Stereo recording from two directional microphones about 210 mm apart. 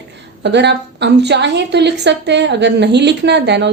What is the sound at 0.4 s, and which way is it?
A woman's voice, 55° right (ahead or behind).